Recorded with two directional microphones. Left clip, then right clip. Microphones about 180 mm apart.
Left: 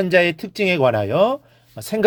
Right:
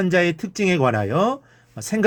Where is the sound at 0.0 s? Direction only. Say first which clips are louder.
Left 3 dB; 25° left (ahead or behind).